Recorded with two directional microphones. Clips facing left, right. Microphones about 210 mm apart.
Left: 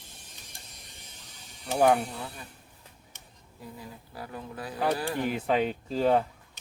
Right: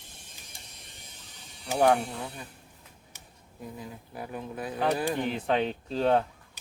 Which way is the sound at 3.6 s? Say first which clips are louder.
Right 3 dB; 20° right (ahead or behind).